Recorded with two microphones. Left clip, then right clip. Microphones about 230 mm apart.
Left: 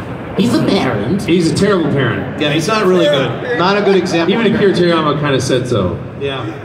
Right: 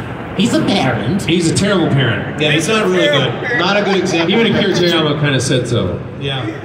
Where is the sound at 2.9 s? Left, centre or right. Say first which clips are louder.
Left 1 dB; centre.